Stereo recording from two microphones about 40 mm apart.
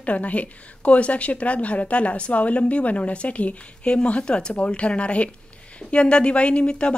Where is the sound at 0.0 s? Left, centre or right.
Left.